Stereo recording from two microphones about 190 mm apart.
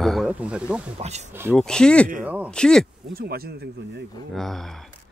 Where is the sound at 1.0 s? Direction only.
35° right (ahead or behind).